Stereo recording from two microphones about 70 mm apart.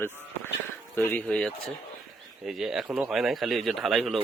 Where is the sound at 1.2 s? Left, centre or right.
Centre.